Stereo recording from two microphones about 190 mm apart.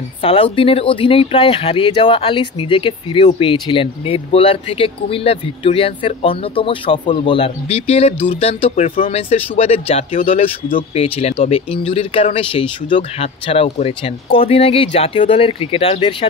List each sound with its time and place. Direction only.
0.2 s speech: 30° left (ahead or behind)